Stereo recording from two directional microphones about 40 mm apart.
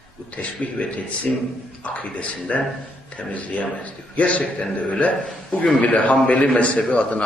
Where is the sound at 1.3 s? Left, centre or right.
Centre.